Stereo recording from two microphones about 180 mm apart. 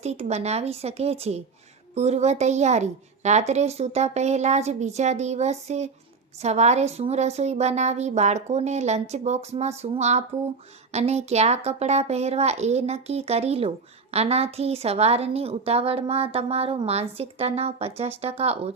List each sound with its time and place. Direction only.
0.0 s a woman's voice: 35° right (ahead or behind)